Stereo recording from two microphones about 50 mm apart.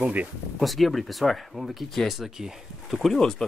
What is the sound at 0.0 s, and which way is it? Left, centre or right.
Speech, right.